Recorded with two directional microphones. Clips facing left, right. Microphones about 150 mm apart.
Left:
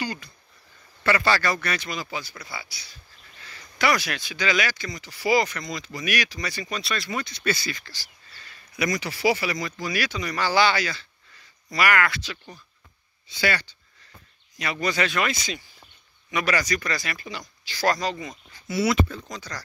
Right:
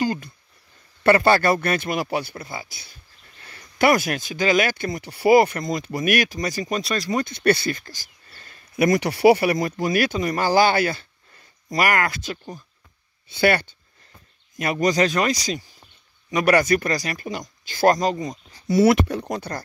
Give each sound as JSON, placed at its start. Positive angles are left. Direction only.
{"t": 0.0, "sound": "a sound", "side_deg": -50}
{"t": 1.0, "sound": "speech", "side_deg": -55}
{"t": 16.4, "sound": "speech", "side_deg": -55}
{"t": 18.9, "sound": "speech", "side_deg": -65}